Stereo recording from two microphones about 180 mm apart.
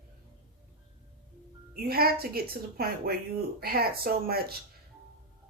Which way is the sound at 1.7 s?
55° right (ahead or behind).